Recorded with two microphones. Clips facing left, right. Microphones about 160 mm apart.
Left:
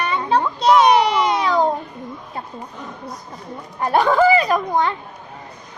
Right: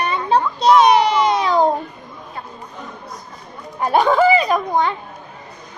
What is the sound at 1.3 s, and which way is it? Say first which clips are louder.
Music: right 2 dB; 20° right (ahead or behind).